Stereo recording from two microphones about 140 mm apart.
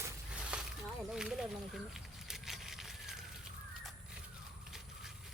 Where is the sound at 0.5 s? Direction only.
10° right (ahead or behind).